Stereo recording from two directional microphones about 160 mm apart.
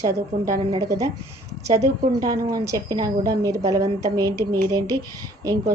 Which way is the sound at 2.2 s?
20° right (ahead or behind).